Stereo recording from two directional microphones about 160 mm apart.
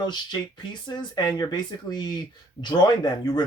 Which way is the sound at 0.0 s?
25° left (ahead or behind).